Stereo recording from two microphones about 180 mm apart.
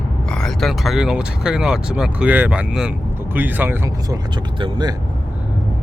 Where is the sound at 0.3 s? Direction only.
5° left (ahead or behind).